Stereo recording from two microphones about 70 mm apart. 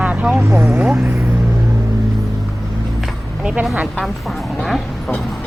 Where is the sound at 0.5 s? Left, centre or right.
Right.